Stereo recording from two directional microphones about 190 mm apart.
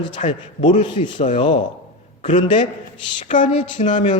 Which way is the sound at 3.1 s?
40° left (ahead or behind).